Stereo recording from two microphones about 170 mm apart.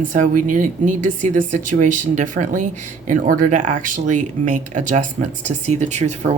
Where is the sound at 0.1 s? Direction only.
50° right (ahead or behind).